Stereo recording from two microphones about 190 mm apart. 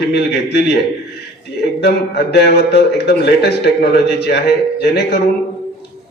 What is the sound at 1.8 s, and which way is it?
A man's voice, 60° left (ahead or behind).